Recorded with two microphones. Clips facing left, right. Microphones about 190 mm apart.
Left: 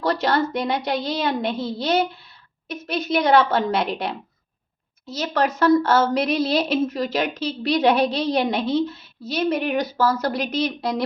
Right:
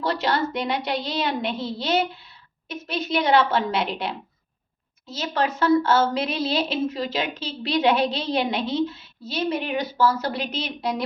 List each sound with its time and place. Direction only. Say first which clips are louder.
0.0 s a sound: left 3 dB; 40° left (ahead or behind)
0.5 s a woman's voice: left 2 dB; 40° left (ahead or behind)
5.2 s a woman's voice: left 3 dB; 40° left (ahead or behind)